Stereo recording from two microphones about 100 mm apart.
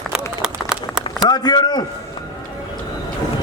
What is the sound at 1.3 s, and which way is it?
Speech, 45° left (ahead or behind).